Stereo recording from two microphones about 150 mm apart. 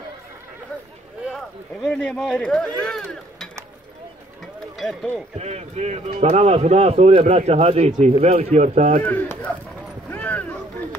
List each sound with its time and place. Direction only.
1.3 s speech: 5° left (ahead or behind)
4.7 s speech: 5° left (ahead or behind)
5.4 s a man's voice: 45° right (ahead or behind)
9.0 s speech: 10° left (ahead or behind)
10.0 s a sound: 10° left (ahead or behind)